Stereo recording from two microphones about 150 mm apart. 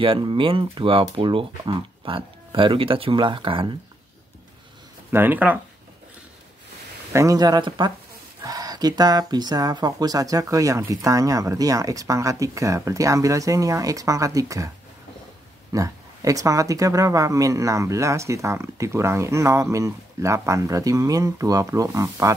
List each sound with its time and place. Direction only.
0.0 s speech: 35° right (ahead or behind)
5.1 s speech: 15° right (ahead or behind)
7.1 s speech: 20° right (ahead or behind)
15.7 s speech: 20° right (ahead or behind)